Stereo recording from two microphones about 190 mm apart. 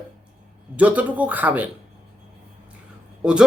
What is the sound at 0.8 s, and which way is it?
Speech, 10° right (ahead or behind).